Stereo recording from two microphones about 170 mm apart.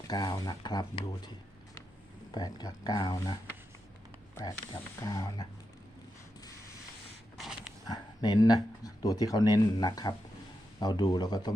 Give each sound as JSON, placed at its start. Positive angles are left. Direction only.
{"t": 0.1, "sound": "speech", "side_deg": 25}
{"t": 2.3, "sound": "speech", "side_deg": 25}
{"t": 4.4, "sound": "speech", "side_deg": 20}
{"t": 7.3, "sound": "a sound", "side_deg": 0}
{"t": 7.9, "sound": "speech", "side_deg": 25}